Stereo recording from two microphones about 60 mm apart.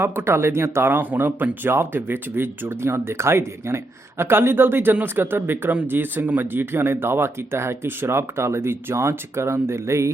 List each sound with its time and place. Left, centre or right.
0.0 s speech: right